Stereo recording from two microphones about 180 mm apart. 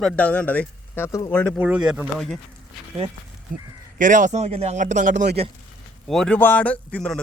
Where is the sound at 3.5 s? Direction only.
50° right (ahead or behind).